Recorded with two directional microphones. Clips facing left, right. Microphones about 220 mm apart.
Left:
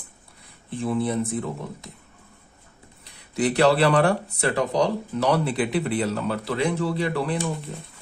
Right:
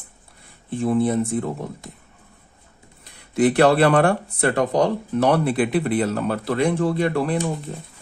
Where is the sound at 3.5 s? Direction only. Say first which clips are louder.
Right 2 dB; 55° right (ahead or behind).